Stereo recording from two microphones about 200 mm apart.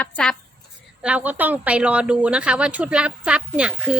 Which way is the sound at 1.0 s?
5° right (ahead or behind).